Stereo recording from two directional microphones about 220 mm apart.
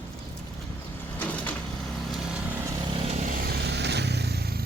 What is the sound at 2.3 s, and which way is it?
Lawn mower, 5° right (ahead or behind).